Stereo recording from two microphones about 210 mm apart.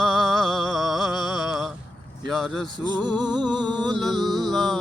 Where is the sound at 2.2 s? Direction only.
Centre (ahead or behind).